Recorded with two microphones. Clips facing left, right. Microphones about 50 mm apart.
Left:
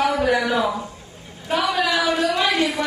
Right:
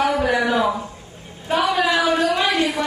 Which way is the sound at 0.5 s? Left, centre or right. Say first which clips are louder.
Right 2 dB; right.